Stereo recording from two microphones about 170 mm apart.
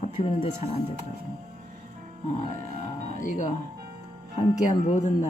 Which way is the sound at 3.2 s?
50° left (ahead or behind).